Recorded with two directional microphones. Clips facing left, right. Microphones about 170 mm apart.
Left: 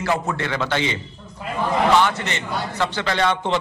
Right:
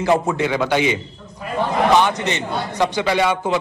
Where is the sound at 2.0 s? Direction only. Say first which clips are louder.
Right 2 dB; 15° right (ahead or behind).